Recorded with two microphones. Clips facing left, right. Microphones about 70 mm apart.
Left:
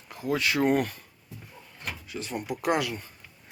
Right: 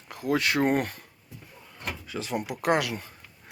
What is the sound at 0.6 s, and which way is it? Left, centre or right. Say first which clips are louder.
Speech: left 1 dB; right.